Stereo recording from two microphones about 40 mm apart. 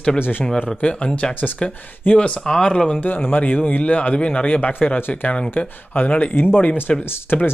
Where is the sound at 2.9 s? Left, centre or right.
Left.